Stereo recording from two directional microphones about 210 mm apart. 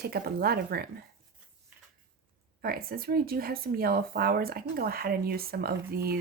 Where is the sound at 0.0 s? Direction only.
45° right (ahead or behind).